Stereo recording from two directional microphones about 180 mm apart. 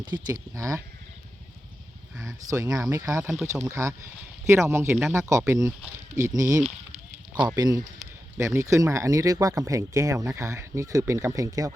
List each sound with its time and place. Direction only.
0.0 s speech: 20° right (ahead or behind)
2.2 s speech: 20° right (ahead or behind)